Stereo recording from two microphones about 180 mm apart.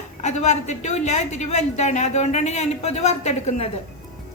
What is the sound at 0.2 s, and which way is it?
A woman's voice, 40° left (ahead or behind).